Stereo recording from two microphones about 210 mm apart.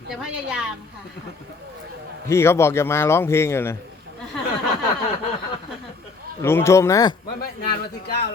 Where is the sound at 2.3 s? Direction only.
10° left (ahead or behind).